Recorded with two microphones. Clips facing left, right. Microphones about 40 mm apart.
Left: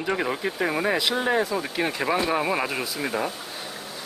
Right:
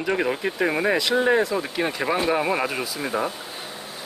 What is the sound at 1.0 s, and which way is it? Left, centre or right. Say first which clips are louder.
Speech: right 3 dB; centre.